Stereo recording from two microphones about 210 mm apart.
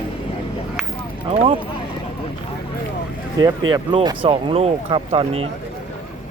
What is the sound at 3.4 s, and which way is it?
Speech, 20° right (ahead or behind).